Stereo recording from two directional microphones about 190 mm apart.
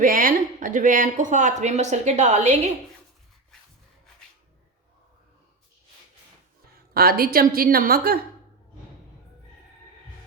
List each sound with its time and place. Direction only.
0.0 s speech: 45° right (ahead or behind)
6.9 s speech: 50° right (ahead or behind)